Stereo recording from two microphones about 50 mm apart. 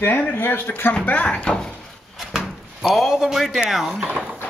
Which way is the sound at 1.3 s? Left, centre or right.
Centre.